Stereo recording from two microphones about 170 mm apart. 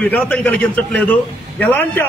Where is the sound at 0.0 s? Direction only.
10° left (ahead or behind).